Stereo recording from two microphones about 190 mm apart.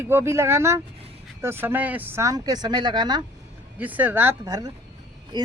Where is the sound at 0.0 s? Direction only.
15° right (ahead or behind).